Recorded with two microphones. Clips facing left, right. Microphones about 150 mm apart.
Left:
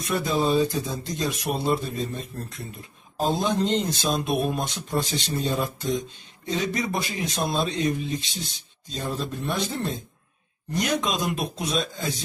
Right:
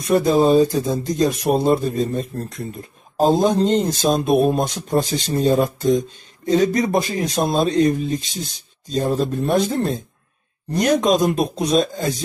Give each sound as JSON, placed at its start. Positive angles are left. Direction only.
{"t": 0.1, "sound": "speech", "side_deg": -45}